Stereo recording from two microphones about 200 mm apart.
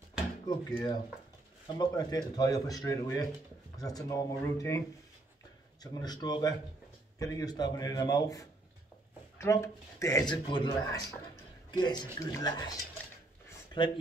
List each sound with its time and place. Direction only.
0.5 s speech: 20° left (ahead or behind)
1.7 s speech: 20° left (ahead or behind)
13.8 s speech: 25° left (ahead or behind)